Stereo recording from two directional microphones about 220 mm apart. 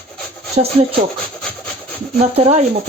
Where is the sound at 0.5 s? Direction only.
25° right (ahead or behind).